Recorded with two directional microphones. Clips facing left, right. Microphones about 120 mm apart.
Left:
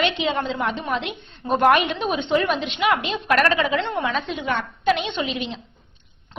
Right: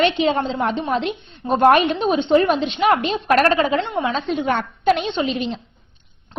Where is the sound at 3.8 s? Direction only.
20° right (ahead or behind).